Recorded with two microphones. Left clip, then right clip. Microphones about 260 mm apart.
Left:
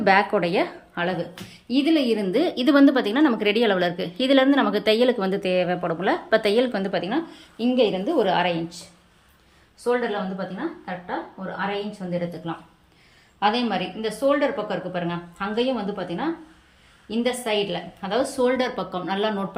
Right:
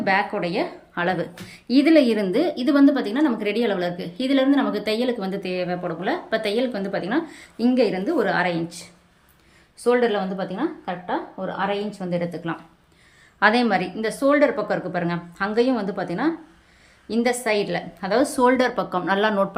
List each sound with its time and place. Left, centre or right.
0.0 s speech: centre
0.9 s a woman's voice: centre
9.8 s a woman's voice: centre